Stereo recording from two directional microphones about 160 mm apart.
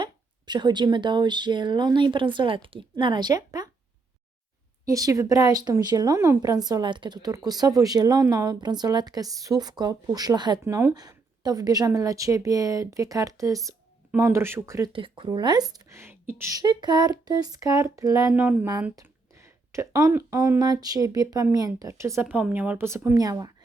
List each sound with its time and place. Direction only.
0.0 s a woman's voice: 30° right (ahead or behind)
4.9 s a woman's voice: 20° right (ahead or behind)
14.9 s a woman's voice: 35° right (ahead or behind)